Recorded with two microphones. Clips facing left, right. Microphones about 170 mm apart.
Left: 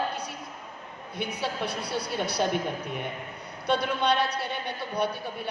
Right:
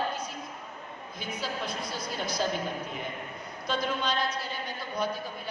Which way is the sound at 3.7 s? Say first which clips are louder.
Left 5 dB; 65° left (ahead or behind).